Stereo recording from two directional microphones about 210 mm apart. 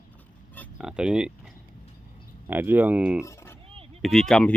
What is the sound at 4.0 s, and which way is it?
Speech, centre (ahead or behind).